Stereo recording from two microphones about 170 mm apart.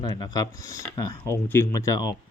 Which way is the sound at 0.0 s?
25° left (ahead or behind).